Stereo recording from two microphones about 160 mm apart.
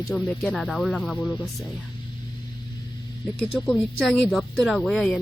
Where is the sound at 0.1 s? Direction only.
5° left (ahead or behind).